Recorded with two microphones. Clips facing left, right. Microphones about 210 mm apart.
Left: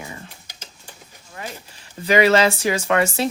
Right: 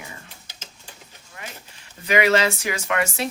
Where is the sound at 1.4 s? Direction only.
35° left (ahead or behind).